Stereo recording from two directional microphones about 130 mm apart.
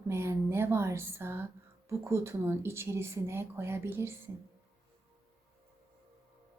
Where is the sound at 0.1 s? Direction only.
20° right (ahead or behind).